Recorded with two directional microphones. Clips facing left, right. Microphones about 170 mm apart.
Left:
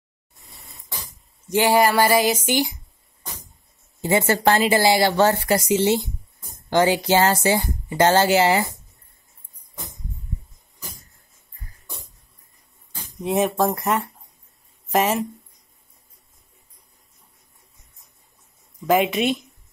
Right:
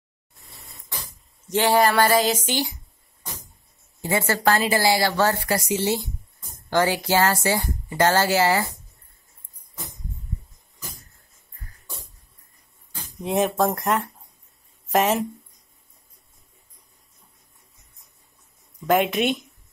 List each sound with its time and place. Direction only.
1.5 s speech: 10° left (ahead or behind)
4.0 s a woman's voice: 20° left (ahead or behind)
13.2 s speech: centre (ahead or behind)
18.9 s speech: centre (ahead or behind)